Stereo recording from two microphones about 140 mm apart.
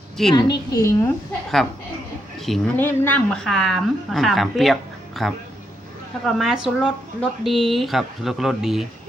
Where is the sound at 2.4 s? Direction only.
Centre (ahead or behind).